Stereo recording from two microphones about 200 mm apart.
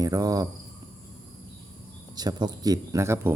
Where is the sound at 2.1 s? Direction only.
20° right (ahead or behind).